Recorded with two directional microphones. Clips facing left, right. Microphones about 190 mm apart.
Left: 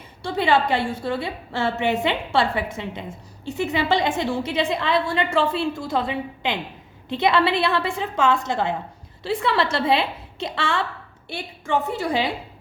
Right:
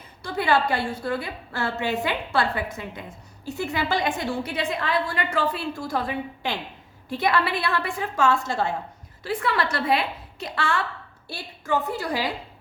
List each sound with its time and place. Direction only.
0.2 s a woman's voice: 25° left (ahead or behind)